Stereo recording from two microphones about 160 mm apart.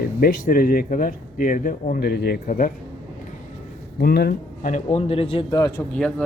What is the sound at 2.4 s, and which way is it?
Speech, 55° left (ahead or behind).